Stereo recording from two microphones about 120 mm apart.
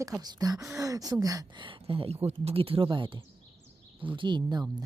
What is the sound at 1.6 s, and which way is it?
Speech, 45° right (ahead or behind).